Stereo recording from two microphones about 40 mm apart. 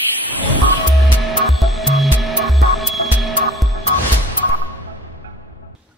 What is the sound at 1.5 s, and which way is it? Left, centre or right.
Music, centre.